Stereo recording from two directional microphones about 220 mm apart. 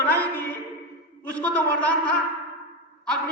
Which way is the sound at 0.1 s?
10° left (ahead or behind).